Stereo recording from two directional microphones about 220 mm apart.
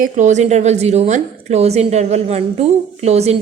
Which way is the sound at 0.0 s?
35° right (ahead or behind).